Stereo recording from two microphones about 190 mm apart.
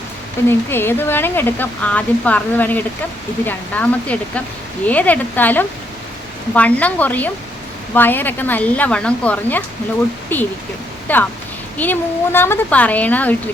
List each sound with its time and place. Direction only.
0.4 s speech: 10° left (ahead or behind)